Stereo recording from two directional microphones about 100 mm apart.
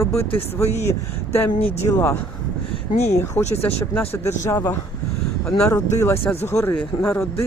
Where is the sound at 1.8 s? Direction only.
25° left (ahead or behind).